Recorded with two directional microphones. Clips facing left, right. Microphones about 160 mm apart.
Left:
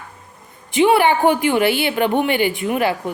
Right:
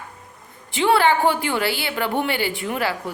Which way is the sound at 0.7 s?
15° left (ahead or behind).